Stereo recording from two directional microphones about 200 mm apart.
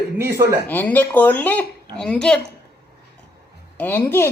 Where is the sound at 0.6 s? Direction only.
10° left (ahead or behind).